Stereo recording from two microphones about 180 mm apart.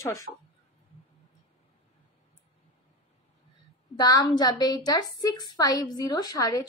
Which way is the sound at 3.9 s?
20° left (ahead or behind).